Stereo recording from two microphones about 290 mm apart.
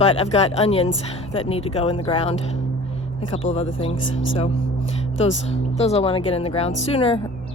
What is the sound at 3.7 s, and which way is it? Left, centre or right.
Speech, centre.